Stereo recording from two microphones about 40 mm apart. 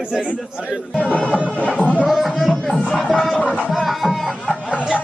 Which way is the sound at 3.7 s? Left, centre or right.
Centre.